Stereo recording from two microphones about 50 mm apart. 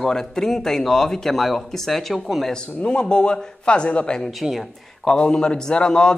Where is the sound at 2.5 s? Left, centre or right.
Centre.